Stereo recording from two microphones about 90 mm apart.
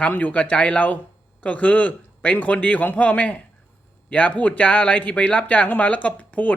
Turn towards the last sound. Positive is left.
turn(degrees=15)  # may be behind; listen again after turning